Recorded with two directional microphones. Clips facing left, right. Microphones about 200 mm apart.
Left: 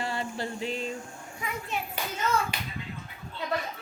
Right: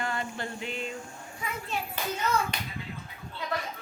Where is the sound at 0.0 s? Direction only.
30° left (ahead or behind).